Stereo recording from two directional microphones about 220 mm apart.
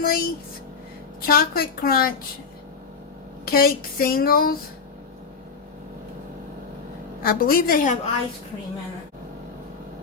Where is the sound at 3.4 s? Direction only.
45° left (ahead or behind).